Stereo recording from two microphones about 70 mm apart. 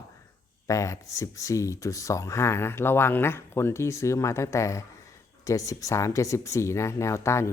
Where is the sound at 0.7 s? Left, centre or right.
Left.